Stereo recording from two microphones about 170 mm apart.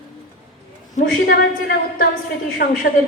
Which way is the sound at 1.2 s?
65° left (ahead or behind).